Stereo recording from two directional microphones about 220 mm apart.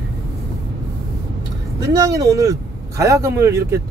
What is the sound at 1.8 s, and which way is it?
Speech, 15° right (ahead or behind).